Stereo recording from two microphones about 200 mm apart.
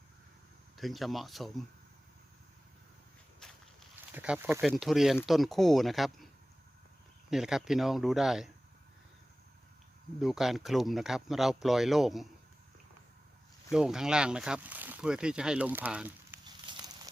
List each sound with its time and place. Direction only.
0.8 s speech: centre (ahead or behind)
3.4 s walk: 5° left (ahead or behind)
4.1 s speech: 10° right (ahead or behind)
4.6 s speech: centre (ahead or behind)
7.3 s speech: centre (ahead or behind)
10.2 s speech: centre (ahead or behind)
13.7 s speech: 5° right (ahead or behind)
16.5 s a sound: 20° right (ahead or behind)